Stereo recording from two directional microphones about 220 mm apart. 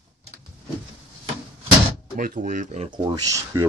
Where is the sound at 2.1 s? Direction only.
40° right (ahead or behind).